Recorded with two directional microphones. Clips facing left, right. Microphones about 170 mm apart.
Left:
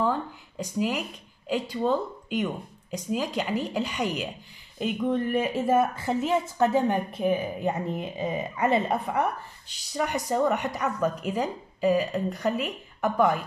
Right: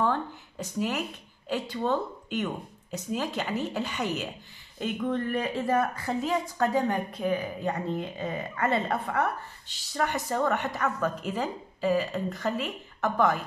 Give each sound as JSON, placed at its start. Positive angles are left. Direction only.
{"t": 0.0, "sound": "a woman's voice", "side_deg": 10}
{"t": 5.2, "sound": "a woman's voice", "side_deg": 15}